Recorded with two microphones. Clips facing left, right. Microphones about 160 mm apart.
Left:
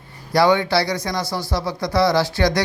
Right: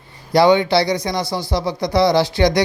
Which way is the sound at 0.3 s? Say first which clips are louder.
Right 3 dB; 20° right (ahead or behind).